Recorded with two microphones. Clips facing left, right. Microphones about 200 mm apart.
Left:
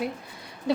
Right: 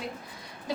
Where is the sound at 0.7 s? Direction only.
65° left (ahead or behind).